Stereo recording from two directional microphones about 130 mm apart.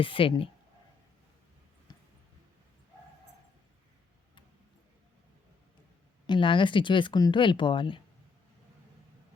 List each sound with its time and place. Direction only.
0.0 s speech: 45° left (ahead or behind)
6.2 s speech: 40° left (ahead or behind)